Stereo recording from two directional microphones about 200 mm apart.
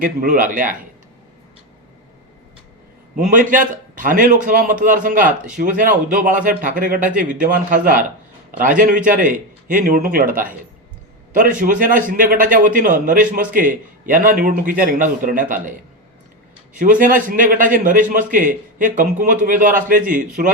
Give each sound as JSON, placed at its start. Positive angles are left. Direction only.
{"t": 0.0, "sound": "a man's voice", "side_deg": -45}
{"t": 3.2, "sound": "a man's voice", "side_deg": -40}
{"t": 16.7, "sound": "a man's voice", "side_deg": -40}